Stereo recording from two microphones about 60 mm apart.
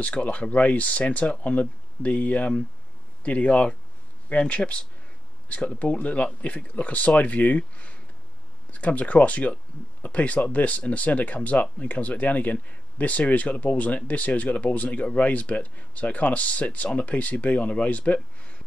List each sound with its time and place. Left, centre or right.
0.0 s speech: left